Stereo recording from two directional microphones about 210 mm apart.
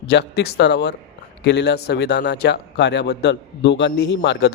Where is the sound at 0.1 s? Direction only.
50° left (ahead or behind).